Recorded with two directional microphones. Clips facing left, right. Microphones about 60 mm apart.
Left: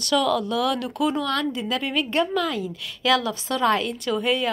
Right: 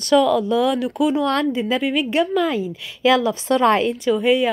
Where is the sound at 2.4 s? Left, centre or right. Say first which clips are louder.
Right 5 dB; right.